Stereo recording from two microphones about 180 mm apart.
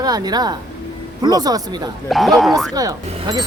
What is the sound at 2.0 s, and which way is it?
Speech, centre (ahead or behind).